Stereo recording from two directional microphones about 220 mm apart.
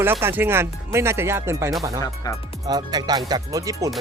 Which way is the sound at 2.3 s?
15° left (ahead or behind).